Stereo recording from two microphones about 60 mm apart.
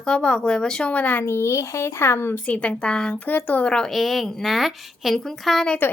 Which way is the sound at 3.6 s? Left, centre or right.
Centre.